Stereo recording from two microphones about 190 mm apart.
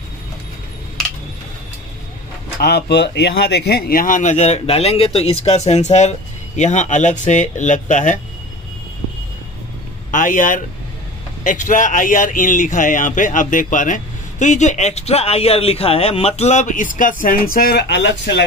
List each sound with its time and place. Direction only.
2.6 s speech: 60° left (ahead or behind); by 8.2 s 40° left (ahead or behind)
10.1 s speech: 45° left (ahead or behind); by 18.4 s 65° left (ahead or behind)